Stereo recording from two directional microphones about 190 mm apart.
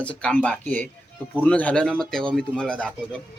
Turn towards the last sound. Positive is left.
turn(degrees=5)  # may be behind; listen again after turning